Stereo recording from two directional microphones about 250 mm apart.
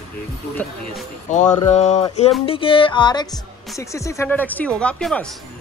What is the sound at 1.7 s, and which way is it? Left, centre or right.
Speech, left.